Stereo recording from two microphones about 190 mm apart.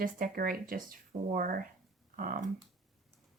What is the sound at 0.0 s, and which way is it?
Speech, 45° right (ahead or behind).